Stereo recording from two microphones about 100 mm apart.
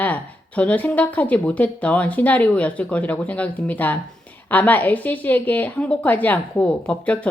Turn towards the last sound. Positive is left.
turn(degrees=10)  # may be behind; listen again after turning